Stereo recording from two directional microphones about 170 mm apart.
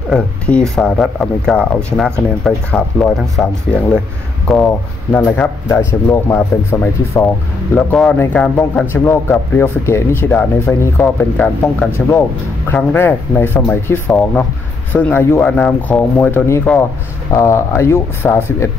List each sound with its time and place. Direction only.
0.1 s speech: 5° left (ahead or behind)
4.5 s a man's voice: 5° left (ahead or behind)